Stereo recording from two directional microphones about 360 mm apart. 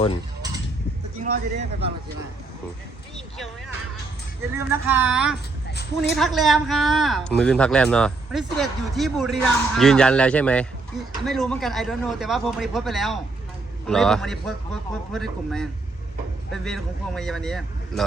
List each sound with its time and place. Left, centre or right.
1.2 s speech: right
3.2 s a sound: centre
4.5 s speech: centre